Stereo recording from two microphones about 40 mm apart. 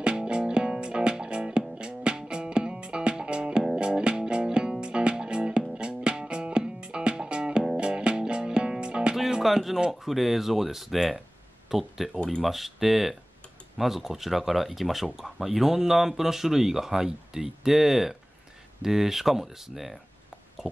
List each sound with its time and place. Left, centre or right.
0.0 s music: right
9.4 s music: centre
9.8 s speech: centre
11.7 s speech: centre